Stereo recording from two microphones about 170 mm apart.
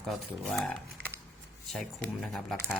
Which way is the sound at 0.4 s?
Centre (ahead or behind).